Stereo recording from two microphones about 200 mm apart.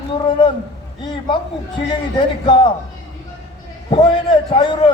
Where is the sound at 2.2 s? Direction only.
25° left (ahead or behind).